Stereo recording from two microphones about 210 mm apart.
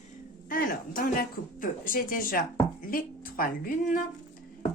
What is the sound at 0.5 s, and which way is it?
A woman's voice, 40° left (ahead or behind).